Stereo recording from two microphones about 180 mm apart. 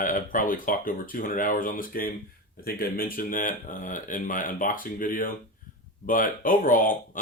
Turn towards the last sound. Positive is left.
turn(degrees=50)  # may be behind; listen again after turning